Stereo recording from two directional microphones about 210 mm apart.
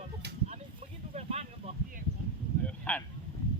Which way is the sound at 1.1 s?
30° right (ahead or behind).